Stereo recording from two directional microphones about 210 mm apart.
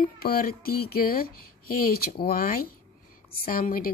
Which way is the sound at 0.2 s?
45° left (ahead or behind).